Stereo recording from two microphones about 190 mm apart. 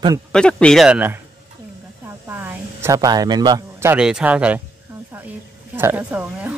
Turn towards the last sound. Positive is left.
turn(degrees=-10)  # may be behind; listen again after turning